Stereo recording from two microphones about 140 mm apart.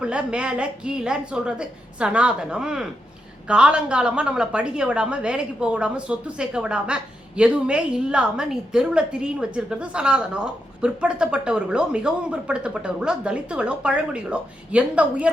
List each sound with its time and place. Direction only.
0.0 s a woman's voice: 5° right (ahead or behind)